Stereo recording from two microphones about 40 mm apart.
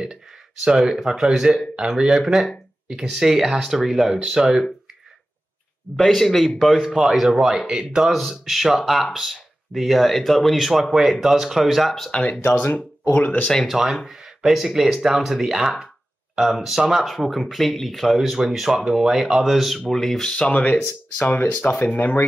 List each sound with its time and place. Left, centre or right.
0.7 s speech: centre
3.4 s speech: centre
5.9 s a man's voice: centre
6.6 s speech: centre
8.1 s speech: centre
12.1 s speech: left
13.1 s speech: left
13.7 s speech: centre
19.4 s speech: centre
19.9 s a man's voice: centre
20.5 s speech: left
21.8 s speech: left